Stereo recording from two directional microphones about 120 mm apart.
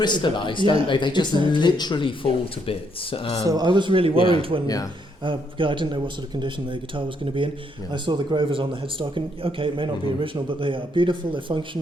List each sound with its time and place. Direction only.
0.0 s speech: 40° left (ahead or behind)
3.4 s a man's voice: 35° right (ahead or behind); by 4.6 s 50° right (ahead or behind)
4.6 s speech: 30° left (ahead or behind)
5.2 s a man's voice: 45° right (ahead or behind)